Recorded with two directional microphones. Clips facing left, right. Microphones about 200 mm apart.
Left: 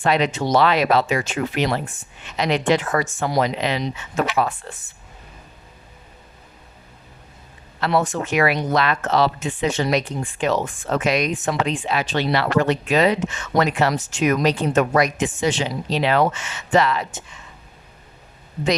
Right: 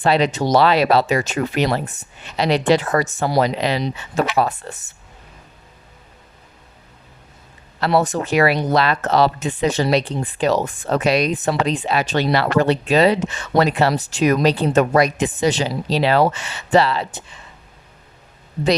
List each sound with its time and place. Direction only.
0.0 s speech: 35° right (ahead or behind)
7.8 s speech: 35° right (ahead or behind)